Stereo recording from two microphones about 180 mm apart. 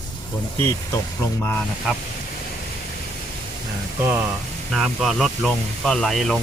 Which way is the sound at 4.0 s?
10° right (ahead or behind).